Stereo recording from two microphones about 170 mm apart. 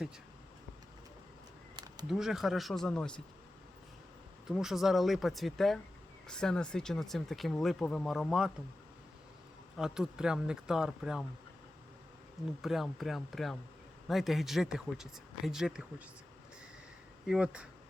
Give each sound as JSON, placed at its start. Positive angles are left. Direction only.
{"t": 1.7, "sound": "a sound", "side_deg": -25}
{"t": 2.0, "sound": "speech", "side_deg": -5}
{"t": 4.4, "sound": "speech", "side_deg": 0}
{"t": 9.7, "sound": "speech", "side_deg": 0}
{"t": 12.6, "sound": "speech", "side_deg": 0}
{"t": 17.2, "sound": "speech", "side_deg": -5}